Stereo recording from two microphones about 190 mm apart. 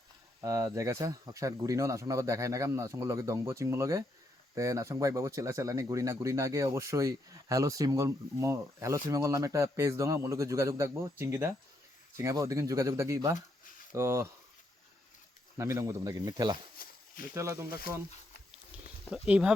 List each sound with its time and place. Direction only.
0.4 s speech: 15° right (ahead or behind)
15.5 s speech: 15° right (ahead or behind)
16.7 s a sound: 50° left (ahead or behind)
17.3 s speech: 15° right (ahead or behind)
19.1 s speech: 5° right (ahead or behind)